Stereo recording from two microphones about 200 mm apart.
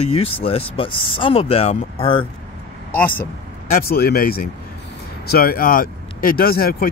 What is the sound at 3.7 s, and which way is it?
Speech, 50° left (ahead or behind).